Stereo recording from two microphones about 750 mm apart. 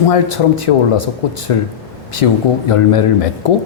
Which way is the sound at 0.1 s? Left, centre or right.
Left.